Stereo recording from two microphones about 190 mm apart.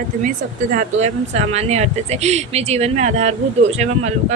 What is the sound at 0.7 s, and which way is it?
Speech, 45° right (ahead or behind).